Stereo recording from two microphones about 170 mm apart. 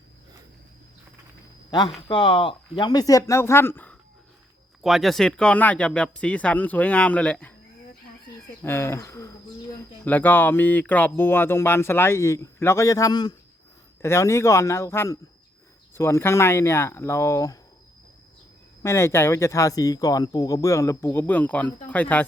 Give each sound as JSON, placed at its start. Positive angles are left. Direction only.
{"t": 1.7, "sound": "speech", "side_deg": 25}
{"t": 4.8, "sound": "speech", "side_deg": 0}
{"t": 8.6, "sound": "speech", "side_deg": 15}
{"t": 18.8, "sound": "speech", "side_deg": 15}